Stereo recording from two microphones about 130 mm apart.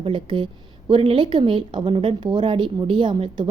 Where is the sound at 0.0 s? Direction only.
40° right (ahead or behind).